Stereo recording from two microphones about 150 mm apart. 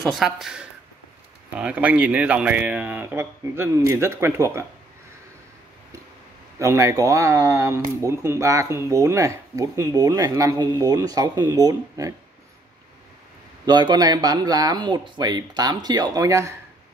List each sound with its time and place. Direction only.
0.1 s a man's voice: centre (ahead or behind); by 4.6 s 15° right (ahead or behind)
6.6 s speech: 20° right (ahead or behind)
13.7 s speech: 30° right (ahead or behind)